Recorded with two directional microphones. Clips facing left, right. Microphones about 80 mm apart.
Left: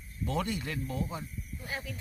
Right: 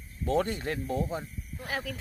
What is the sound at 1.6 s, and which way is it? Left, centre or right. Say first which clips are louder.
Speech: right 5 dB; right.